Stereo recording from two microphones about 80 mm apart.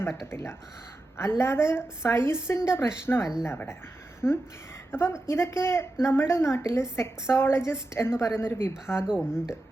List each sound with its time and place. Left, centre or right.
0.0 s a woman's voice: left
9.0 s speech: centre